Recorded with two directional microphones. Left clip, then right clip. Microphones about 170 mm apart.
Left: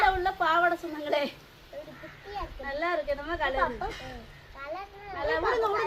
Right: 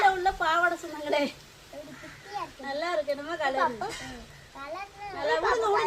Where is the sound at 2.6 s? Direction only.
Centre (ahead or behind).